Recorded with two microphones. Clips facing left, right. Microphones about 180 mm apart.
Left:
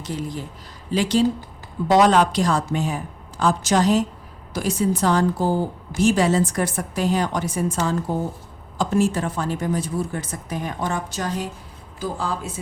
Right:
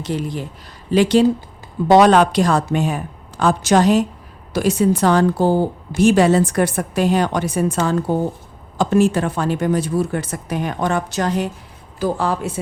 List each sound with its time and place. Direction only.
0.0 s speech: 70° right (ahead or behind)